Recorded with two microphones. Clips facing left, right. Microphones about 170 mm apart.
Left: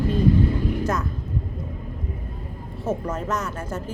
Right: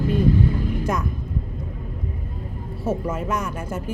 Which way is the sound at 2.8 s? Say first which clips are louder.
Right 1 dB; 10° right (ahead or behind).